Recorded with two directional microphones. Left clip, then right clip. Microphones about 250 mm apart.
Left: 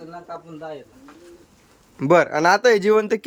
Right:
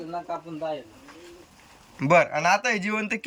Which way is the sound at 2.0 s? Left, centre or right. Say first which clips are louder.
Left 4 dB; centre.